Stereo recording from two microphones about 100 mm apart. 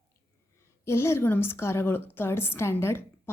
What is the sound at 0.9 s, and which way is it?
A woman's voice, 25° left (ahead or behind).